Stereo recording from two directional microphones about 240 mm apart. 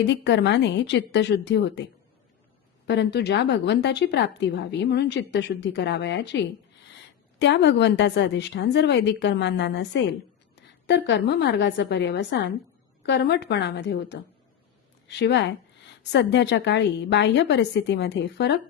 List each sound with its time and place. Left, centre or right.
0.1 s a woman's voice: left
2.8 s a woman's voice: left